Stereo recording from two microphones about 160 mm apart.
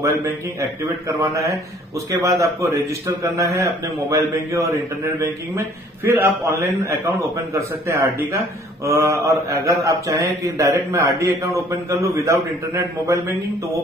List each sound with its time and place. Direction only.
0.0 s a man's voice: 20° right (ahead or behind)
6.0 s a man's voice: 15° right (ahead or behind)